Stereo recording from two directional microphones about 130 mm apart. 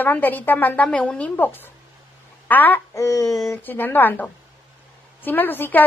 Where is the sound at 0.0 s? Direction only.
15° left (ahead or behind).